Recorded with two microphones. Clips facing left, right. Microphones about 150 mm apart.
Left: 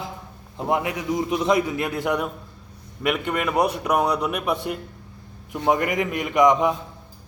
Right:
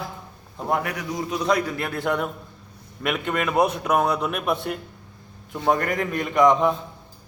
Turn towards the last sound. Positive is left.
turn(degrees=10)  # may be behind; listen again after turning